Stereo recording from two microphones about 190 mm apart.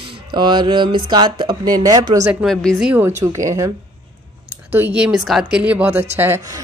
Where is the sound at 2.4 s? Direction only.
Centre (ahead or behind).